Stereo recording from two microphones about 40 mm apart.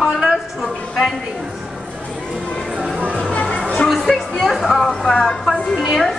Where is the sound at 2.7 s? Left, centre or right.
Right.